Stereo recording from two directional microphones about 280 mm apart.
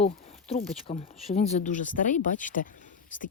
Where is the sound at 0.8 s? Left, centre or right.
Left.